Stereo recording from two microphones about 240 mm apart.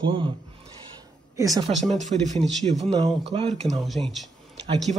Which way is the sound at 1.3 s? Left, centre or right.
Centre.